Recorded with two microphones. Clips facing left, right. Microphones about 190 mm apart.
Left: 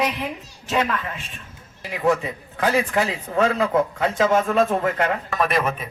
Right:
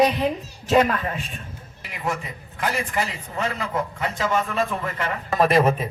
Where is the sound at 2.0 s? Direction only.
65° left (ahead or behind); by 4.5 s 90° left.